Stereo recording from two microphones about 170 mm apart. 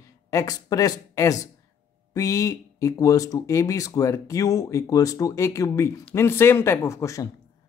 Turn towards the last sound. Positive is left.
turn(degrees=15)  # may be behind; listen again after turning